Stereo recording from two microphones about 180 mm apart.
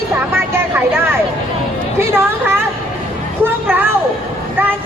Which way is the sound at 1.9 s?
15° right (ahead or behind).